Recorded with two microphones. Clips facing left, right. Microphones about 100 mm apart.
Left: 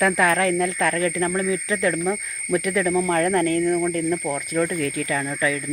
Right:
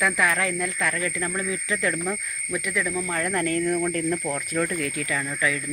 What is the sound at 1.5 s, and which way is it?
Speech, 25° left (ahead or behind).